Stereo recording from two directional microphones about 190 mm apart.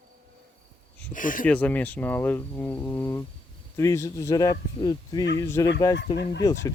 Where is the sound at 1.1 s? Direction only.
45° left (ahead or behind).